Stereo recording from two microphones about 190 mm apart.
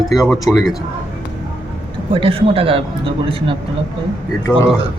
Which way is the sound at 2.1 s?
30° right (ahead or behind).